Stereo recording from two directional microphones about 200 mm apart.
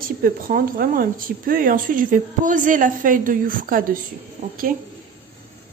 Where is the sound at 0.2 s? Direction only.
45° right (ahead or behind).